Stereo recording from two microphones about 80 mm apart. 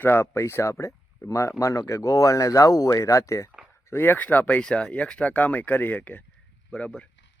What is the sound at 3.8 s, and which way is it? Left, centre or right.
Speech, left.